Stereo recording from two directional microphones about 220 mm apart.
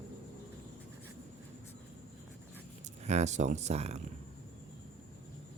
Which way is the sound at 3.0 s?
30° right (ahead or behind).